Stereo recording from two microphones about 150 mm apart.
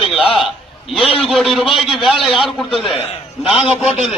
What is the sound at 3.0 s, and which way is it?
Speech, 40° left (ahead or behind).